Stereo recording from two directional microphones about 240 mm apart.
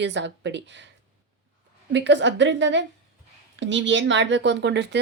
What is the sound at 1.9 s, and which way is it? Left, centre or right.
Speech, right.